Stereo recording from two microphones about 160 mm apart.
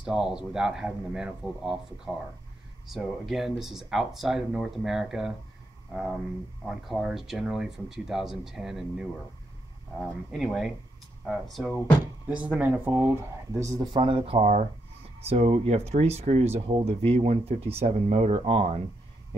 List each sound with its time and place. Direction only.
0.0 s speech: 5° right (ahead or behind)
2.9 s speech: centre (ahead or behind)
6.6 s speech: centre (ahead or behind); by 14.0 s 20° right (ahead or behind)
14.0 s speech: 35° right (ahead or behind)